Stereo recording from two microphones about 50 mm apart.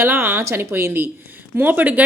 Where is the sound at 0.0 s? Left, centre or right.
Right.